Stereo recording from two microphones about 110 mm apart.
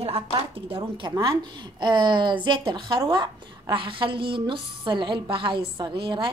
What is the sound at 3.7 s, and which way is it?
A woman's voice, 50° right (ahead or behind).